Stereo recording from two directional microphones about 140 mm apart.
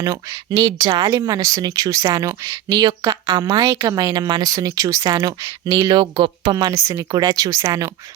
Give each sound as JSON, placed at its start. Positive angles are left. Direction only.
{"t": 0.0, "sound": "speech", "side_deg": -25}